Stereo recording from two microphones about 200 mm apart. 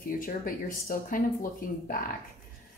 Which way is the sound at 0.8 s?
45° left (ahead or behind).